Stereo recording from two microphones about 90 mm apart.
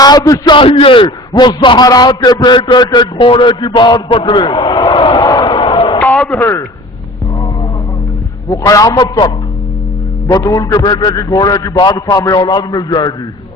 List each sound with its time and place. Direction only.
0.0 s a man's voice: 50° left (ahead or behind)
0.6 s a man's voice: 85° left
1.4 s a man's voice: 60° left (ahead or behind)
1.9 s a man's voice: 50° left (ahead or behind)
5.2 s a sound: 50° left (ahead or behind); by 6.0 s 65° left (ahead or behind)
8.4 s a man's voice: 40° left (ahead or behind)
10.3 s a man's voice: 40° left (ahead or behind)
11.7 s a man's voice: 60° left (ahead or behind)
12.1 s a man's voice: 45° left (ahead or behind)